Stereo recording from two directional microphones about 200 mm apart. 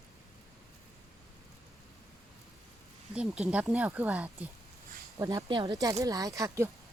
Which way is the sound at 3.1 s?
5° right (ahead or behind).